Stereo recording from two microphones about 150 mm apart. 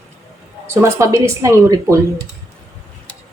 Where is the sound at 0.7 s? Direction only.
20° right (ahead or behind).